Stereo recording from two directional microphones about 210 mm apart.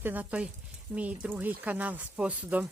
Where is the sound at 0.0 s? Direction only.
10° right (ahead or behind).